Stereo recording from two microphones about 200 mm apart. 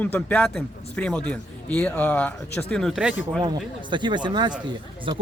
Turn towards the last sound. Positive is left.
turn(degrees=-25)  # may be behind; listen again after turning